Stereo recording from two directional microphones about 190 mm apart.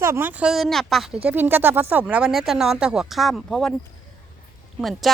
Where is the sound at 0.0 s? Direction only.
10° right (ahead or behind).